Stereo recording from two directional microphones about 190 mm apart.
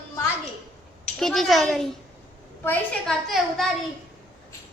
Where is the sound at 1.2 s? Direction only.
Centre (ahead or behind).